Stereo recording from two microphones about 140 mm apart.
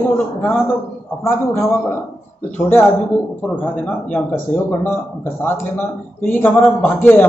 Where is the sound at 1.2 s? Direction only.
20° left (ahead or behind).